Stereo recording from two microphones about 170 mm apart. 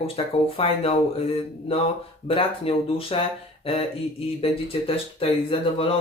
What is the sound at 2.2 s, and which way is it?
Speech, 35° left (ahead or behind).